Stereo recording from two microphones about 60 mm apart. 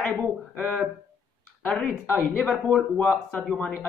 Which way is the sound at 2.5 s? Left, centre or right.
Centre.